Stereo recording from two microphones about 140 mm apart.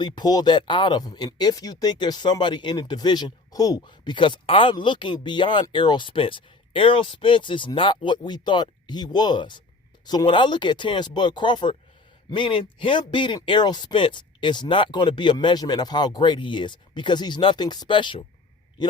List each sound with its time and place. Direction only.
0.0 s speech: 30° left (ahead or behind)